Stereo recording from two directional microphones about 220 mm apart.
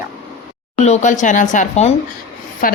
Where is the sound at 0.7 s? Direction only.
30° left (ahead or behind).